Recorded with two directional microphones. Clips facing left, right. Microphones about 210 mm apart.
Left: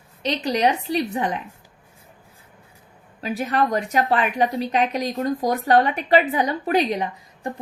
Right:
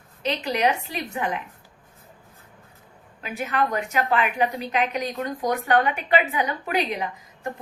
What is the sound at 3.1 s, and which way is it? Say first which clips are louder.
A woman's voice: left 4 dB; 35° left (ahead or behind).